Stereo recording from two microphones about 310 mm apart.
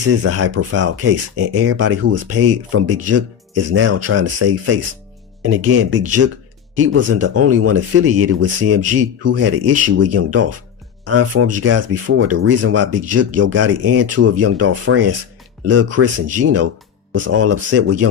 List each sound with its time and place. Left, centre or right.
0.0 s speech: right
17.7 s speech: right